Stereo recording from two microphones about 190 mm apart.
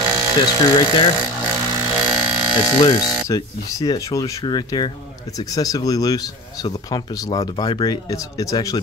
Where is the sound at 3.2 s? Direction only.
20° left (ahead or behind).